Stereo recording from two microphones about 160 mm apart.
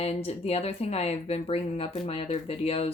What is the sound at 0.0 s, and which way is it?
Speech, 40° left (ahead or behind).